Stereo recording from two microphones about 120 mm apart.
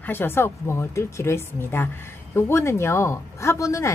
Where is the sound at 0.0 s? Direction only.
20° left (ahead or behind).